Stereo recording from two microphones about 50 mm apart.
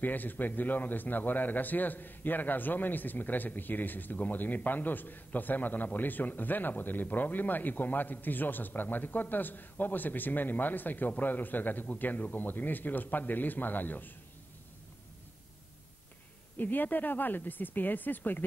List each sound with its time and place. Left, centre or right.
0.0 s a man's voice: left
16.5 s a man's voice: left